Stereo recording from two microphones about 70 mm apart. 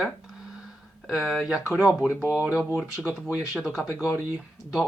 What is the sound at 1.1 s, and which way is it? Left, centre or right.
Speech, centre.